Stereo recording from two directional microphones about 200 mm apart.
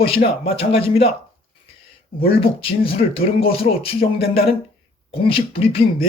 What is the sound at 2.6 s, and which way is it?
Speech, 30° left (ahead or behind).